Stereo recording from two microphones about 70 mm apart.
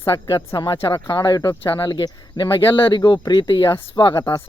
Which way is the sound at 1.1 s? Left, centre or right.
Left.